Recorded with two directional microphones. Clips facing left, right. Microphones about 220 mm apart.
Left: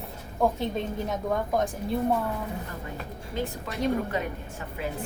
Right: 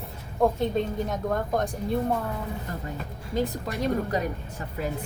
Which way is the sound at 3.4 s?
40° right (ahead or behind).